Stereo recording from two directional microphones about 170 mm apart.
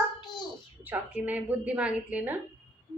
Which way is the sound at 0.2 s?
25° left (ahead or behind).